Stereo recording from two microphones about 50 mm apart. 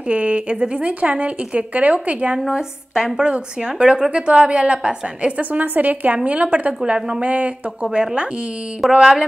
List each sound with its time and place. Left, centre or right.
0.1 s speech: right
2.5 s a woman's voice: centre
5.5 s a woman's voice: right
6.8 s speech: centre
8.8 s mantra: centre